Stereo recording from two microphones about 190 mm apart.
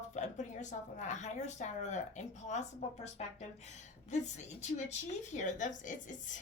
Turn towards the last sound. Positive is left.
turn(degrees=40)  # may be behind; listen again after turning